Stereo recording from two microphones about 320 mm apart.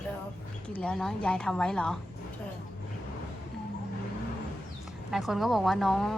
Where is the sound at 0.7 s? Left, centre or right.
Centre.